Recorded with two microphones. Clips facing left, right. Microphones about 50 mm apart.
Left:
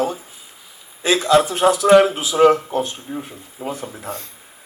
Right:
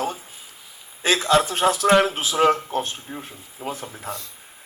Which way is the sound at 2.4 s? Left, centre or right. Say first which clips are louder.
Left 6 dB; left.